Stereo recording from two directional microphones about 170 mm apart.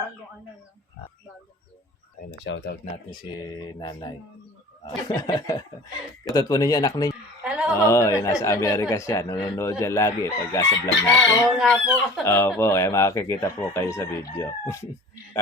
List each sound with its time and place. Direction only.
2.3 s speech: 90° left
3.2 s speech: 25° left (ahead or behind)
7.1 s a sound: 5° right (ahead or behind)
7.8 s speech: 15° left (ahead or behind)
11.5 s speech: centre (ahead or behind)
12.2 s speech: 15° left (ahead or behind)